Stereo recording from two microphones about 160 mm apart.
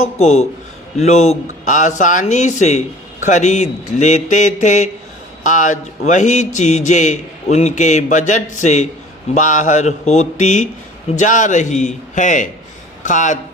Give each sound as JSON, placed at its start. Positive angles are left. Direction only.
{"t": 0.2, "sound": "a man's voice", "side_deg": 40}